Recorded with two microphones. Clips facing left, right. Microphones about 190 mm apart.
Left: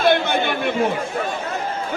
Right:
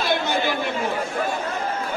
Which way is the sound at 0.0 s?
60° left (ahead or behind).